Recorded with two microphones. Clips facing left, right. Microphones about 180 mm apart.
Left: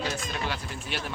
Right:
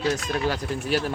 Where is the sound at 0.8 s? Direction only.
40° right (ahead or behind).